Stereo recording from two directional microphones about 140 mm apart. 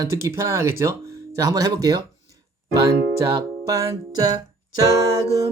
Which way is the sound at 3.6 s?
25° right (ahead or behind).